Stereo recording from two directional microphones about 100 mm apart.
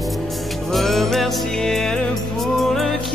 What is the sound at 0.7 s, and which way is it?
Music, centre (ahead or behind).